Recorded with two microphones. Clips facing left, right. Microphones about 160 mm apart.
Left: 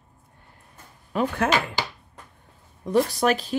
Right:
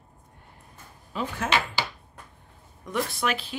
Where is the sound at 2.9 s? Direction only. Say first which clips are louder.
Left 7 dB; 35° left (ahead or behind).